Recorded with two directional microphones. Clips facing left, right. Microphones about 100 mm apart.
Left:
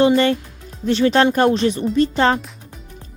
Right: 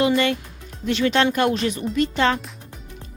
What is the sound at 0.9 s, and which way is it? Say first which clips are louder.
Speech: left 4 dB; 35° left (ahead or behind).